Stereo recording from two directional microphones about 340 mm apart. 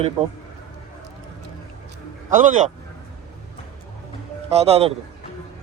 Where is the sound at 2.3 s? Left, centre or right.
Right.